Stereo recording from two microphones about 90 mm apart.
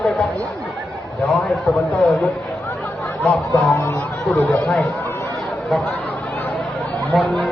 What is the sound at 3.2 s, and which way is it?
Speech, 15° left (ahead or behind).